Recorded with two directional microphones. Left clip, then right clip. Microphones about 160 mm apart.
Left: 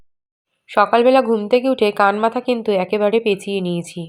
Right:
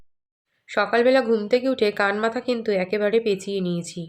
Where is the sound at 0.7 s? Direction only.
20° left (ahead or behind).